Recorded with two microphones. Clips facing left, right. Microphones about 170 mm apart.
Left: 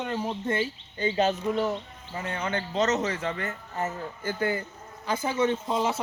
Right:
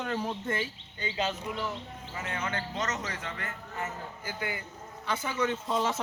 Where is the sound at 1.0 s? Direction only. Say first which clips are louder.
Left 8 dB; 45° left (ahead or behind); by 3.9 s 30° left (ahead or behind).